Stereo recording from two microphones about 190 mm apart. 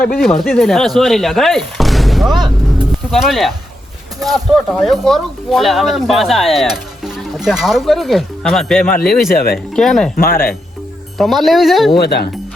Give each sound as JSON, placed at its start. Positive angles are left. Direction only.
{"t": 0.2, "sound": "speech", "side_deg": 0}
{"t": 9.3, "sound": "speech", "side_deg": 50}
{"t": 9.7, "sound": "speech", "side_deg": 0}
{"t": 10.2, "sound": "speech", "side_deg": 50}
{"t": 11.2, "sound": "speech", "side_deg": 0}
{"t": 11.9, "sound": "speech", "side_deg": 60}